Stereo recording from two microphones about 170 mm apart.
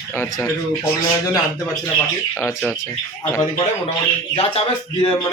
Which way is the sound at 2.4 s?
15° left (ahead or behind).